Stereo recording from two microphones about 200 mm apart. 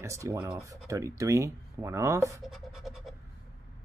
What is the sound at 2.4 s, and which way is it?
Scratch, centre (ahead or behind).